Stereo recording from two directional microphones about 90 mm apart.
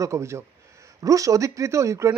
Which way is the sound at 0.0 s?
30° right (ahead or behind).